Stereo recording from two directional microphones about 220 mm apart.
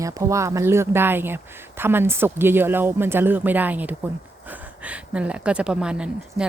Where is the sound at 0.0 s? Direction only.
15° right (ahead or behind).